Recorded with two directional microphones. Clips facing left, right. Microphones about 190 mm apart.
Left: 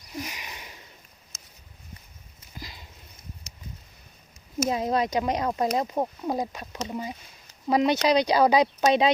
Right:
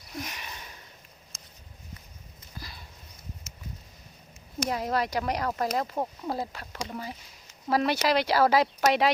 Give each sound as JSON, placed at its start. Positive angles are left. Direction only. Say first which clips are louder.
{"t": 0.2, "sound": "sniff", "louder": "left 2 dB", "side_deg": 10}
{"t": 1.3, "sound": "a sound", "louder": "even", "side_deg": 0}
{"t": 2.6, "sound": "horse", "louder": "left 2 dB", "side_deg": 20}
{"t": 4.7, "sound": "speech", "louder": "left 3 dB", "side_deg": 20}